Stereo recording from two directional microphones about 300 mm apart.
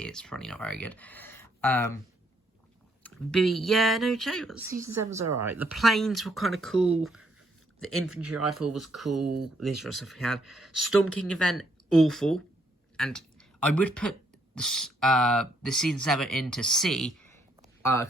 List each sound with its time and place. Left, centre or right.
0.0 s speech: centre
3.0 s speech: centre
5.2 s a woman's voice: right
5.5 s speech: centre
8.1 s speech: right
8.4 s speech: centre
11.0 s speech: right
11.5 s speech: centre